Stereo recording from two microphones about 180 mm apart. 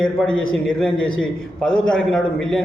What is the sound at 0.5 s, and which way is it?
A man's voice, 5° left (ahead or behind).